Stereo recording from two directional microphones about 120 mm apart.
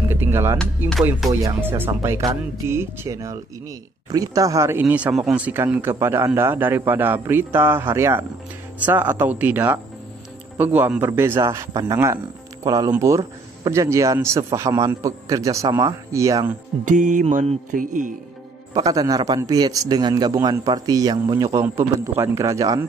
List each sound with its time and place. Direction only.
0.1 s a man's voice: 20° right (ahead or behind)
0.6 s speech: 5° left (ahead or behind)
1.4 s a man's voice: 20° right (ahead or behind)
16.8 s music: 90° right
18.7 s a man's voice: 30° right (ahead or behind)